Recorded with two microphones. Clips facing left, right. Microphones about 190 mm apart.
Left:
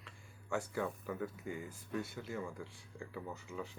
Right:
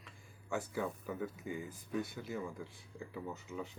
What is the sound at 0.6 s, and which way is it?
Speech, 20° right (ahead or behind).